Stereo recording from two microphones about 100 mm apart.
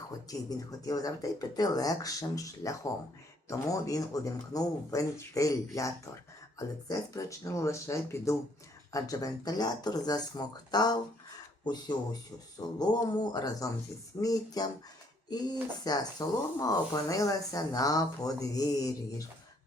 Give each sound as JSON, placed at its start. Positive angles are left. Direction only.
{"t": 0.3, "sound": "speech", "side_deg": 35}
{"t": 15.8, "sound": "speech", "side_deg": 40}